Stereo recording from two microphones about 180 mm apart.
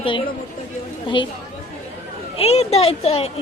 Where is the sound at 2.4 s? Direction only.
35° left (ahead or behind).